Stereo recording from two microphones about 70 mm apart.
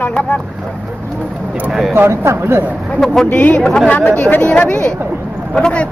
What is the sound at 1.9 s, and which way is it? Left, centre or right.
Speech, right.